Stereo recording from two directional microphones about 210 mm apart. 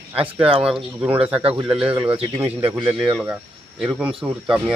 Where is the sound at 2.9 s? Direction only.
5° right (ahead or behind).